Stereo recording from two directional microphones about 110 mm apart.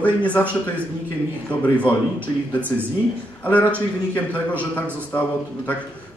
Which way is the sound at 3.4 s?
15° left (ahead or behind).